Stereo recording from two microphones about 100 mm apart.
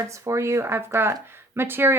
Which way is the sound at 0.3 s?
30° right (ahead or behind).